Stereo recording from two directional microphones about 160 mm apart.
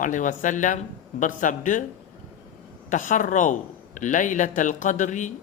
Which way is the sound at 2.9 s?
55° left (ahead or behind).